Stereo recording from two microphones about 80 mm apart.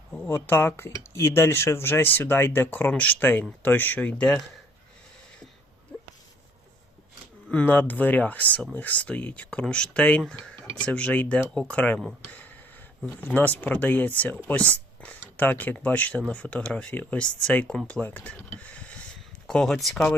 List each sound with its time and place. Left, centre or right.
0.3 s speech: left
7.5 s speech: left
11.4 s speech: centre
11.7 s speech: centre
12.3 s a sound: centre
13.2 s speech: left; by 20.0 s centre